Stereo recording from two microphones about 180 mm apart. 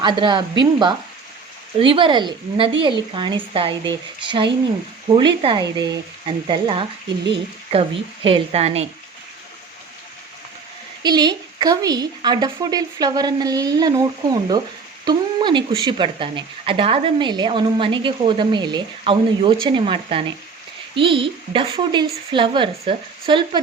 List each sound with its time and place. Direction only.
0.0 s a woman's voice: 25° right (ahead or behind)
11.0 s speech: 20° right (ahead or behind)